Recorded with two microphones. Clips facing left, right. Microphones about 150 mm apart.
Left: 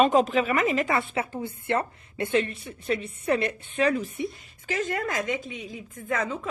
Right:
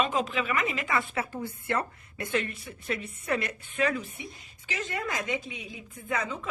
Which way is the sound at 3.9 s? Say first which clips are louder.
Left 7 dB; 40° left (ahead or behind).